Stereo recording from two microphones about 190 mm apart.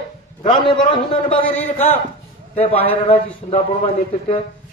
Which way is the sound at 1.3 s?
10° left (ahead or behind).